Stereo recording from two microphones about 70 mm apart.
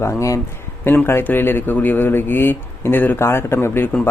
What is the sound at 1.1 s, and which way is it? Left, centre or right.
Speech, left.